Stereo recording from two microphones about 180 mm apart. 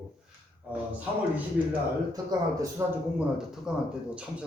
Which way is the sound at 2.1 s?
20° right (ahead or behind).